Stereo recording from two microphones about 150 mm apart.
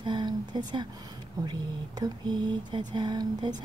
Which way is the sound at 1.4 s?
30° right (ahead or behind).